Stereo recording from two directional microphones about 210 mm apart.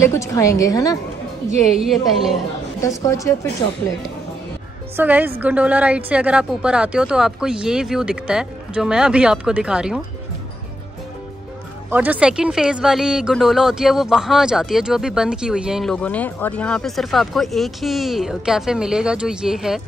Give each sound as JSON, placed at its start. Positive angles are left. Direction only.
{"t": 0.0, "sound": "a woman's voice", "side_deg": 15}
{"t": 1.8, "sound": "speech", "side_deg": 0}
{"t": 3.0, "sound": "a woman's voice", "side_deg": 15}
{"t": 4.9, "sound": "a woman's voice", "side_deg": -10}
{"t": 11.9, "sound": "speech", "side_deg": -10}